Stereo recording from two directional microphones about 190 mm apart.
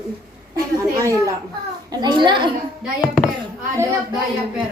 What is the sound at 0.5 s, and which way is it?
A woman's voice, 15° right (ahead or behind).